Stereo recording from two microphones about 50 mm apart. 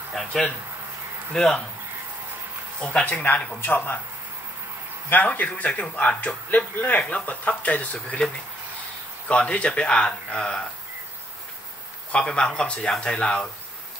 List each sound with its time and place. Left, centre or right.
0.1 s speech: centre
2.9 s speech: left
3.7 s speech: left
5.1 s a man's voice: left
7.0 s speech: left
9.3 s speech: left
12.1 s speech: centre